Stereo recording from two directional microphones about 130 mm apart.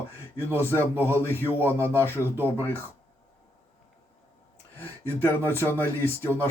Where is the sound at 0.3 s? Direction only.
15° left (ahead or behind).